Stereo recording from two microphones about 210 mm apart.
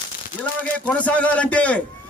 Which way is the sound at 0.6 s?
5° left (ahead or behind).